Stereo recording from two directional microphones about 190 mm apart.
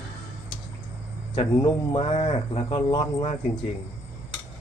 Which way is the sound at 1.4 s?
25° left (ahead or behind).